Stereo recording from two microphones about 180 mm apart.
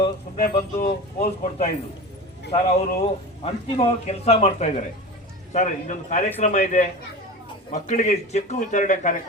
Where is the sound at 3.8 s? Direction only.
35° left (ahead or behind).